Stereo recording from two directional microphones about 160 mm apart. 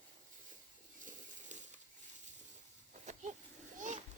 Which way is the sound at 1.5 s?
50° right (ahead or behind).